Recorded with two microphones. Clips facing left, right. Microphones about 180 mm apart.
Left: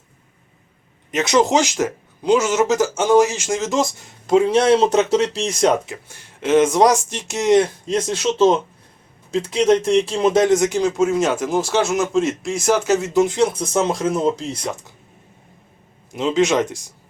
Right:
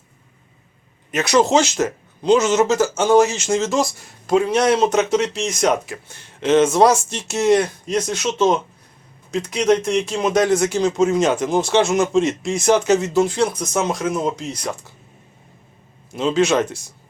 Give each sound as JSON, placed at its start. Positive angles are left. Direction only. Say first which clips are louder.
{"t": 1.1, "sound": "speech", "louder": "right 1 dB", "side_deg": 20}
{"t": 5.9, "sound": "speech", "louder": "right 1 dB", "side_deg": 10}
{"t": 13.1, "sound": "speech", "louder": "left 1 dB", "side_deg": 20}
{"t": 16.1, "sound": "speech", "louder": "even", "side_deg": 15}